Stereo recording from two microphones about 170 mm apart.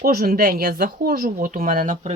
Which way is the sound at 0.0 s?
65° right (ahead or behind).